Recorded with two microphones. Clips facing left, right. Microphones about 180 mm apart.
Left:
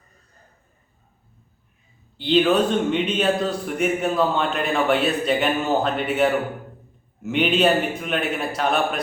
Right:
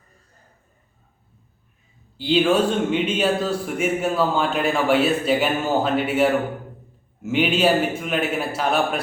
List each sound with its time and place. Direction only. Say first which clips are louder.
2.1 s speech: even; 5° right (ahead or behind)